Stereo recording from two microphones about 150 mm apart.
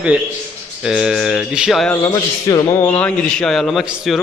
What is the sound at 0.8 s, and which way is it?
A man's voice, 5° right (ahead or behind).